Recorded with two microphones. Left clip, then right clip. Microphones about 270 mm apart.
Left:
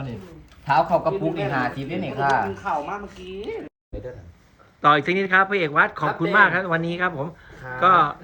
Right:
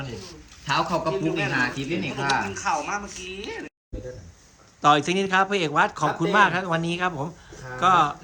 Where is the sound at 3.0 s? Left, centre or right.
Left.